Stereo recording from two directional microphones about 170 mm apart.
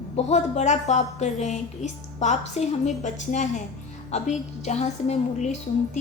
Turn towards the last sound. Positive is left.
turn(degrees=45)  # may be behind; listen again after turning